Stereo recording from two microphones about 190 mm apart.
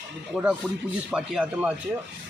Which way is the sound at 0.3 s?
5° right (ahead or behind).